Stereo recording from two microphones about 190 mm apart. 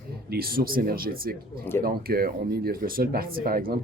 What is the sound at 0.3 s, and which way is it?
Speech, 55° right (ahead or behind).